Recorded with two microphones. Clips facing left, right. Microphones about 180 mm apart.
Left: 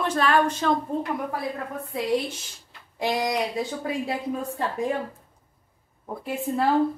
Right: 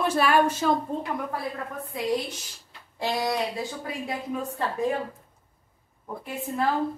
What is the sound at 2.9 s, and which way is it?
Speech, 15° left (ahead or behind).